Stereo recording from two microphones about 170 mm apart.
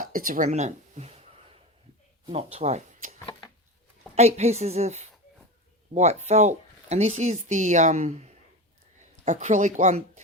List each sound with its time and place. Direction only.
0.0 s speech: 55° right (ahead or behind)
2.3 s speech: 40° right (ahead or behind)
3.2 s a sound: 25° left (ahead or behind)
4.1 s a woman's voice: 40° right (ahead or behind)